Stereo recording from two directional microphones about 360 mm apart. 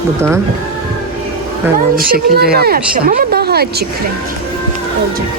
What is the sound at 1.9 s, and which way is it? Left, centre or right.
Speech, right.